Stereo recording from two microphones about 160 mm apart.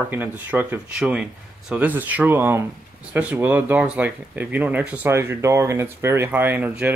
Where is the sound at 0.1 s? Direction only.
10° right (ahead or behind).